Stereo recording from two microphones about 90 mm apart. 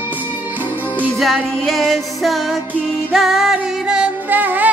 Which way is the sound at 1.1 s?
Centre (ahead or behind).